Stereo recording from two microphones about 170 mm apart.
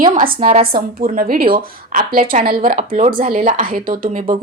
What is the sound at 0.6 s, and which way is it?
Speech, 60° right (ahead or behind).